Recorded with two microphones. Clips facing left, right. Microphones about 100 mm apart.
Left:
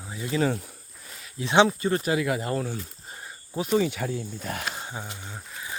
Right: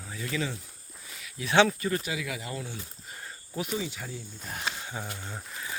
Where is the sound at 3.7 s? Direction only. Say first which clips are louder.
Left 10 dB; 65° left (ahead or behind).